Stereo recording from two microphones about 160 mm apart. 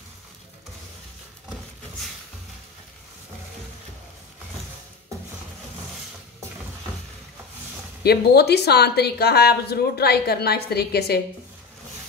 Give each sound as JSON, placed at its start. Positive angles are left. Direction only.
{"t": 8.0, "sound": "speech", "side_deg": 85}